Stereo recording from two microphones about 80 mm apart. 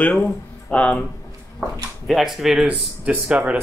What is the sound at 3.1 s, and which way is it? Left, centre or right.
Speech, centre.